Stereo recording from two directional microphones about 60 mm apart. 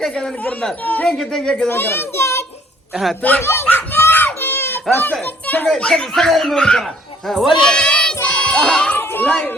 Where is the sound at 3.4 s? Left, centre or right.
Left.